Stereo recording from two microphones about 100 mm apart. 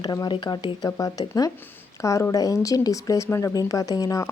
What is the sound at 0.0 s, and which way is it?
Speech, 45° left (ahead or behind).